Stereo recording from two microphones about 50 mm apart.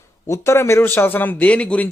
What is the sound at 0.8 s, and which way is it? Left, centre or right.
Speech, left.